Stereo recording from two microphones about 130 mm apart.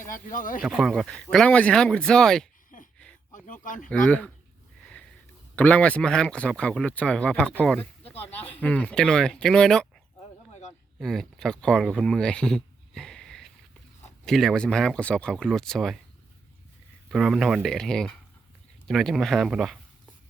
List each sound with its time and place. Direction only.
0.0 s speech: 90° left
0.6 s speech: centre (ahead or behind)
2.7 s a sound: 80° left
3.3 s speech: 80° left
3.8 s speech: 10° left (ahead or behind)
5.5 s speech: 10° left (ahead or behind)
10.5 s a sound: 60° left (ahead or behind)
11.0 s speech: 5° left (ahead or behind)
17.1 s speech: 5° right (ahead or behind)